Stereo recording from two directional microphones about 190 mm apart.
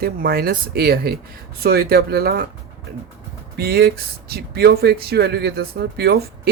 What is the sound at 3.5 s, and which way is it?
Speech, 55° right (ahead or behind).